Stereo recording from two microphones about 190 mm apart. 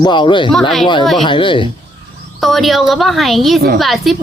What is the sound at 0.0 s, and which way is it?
Speech, 25° left (ahead or behind).